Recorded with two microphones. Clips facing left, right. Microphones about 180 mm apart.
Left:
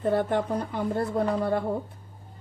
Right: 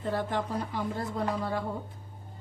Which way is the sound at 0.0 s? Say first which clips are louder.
Left 6 dB; 60° left (ahead or behind).